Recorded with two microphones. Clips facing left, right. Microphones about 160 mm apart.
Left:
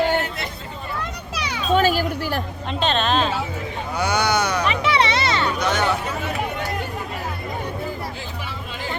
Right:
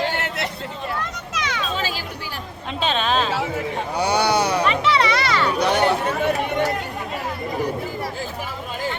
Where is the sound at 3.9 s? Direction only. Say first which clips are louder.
Right 1 dB; 35° right (ahead or behind).